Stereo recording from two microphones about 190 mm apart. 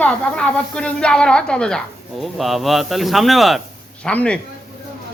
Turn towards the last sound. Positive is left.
turn(degrees=5)  # may be behind; listen again after turning